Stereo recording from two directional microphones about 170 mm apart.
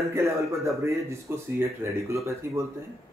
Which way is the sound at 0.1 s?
15° right (ahead or behind).